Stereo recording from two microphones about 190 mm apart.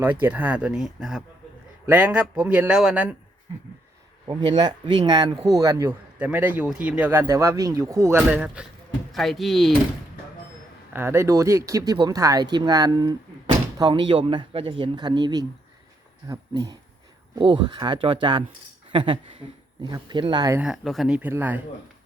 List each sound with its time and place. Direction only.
0.0 s speech: 10° right (ahead or behind)
4.3 s speech: 25° right (ahead or behind); by 9.7 s centre (ahead or behind)
10.9 s speech: 15° right (ahead or behind)
20.6 s speech: centre (ahead or behind)